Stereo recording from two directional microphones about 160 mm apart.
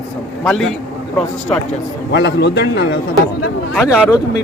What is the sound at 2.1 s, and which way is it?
Speech, 90° left.